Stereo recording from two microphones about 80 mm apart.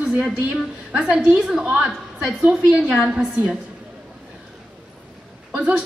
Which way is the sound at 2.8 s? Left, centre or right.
Centre.